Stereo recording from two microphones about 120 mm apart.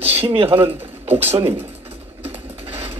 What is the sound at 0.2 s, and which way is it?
Speech, 50° right (ahead or behind).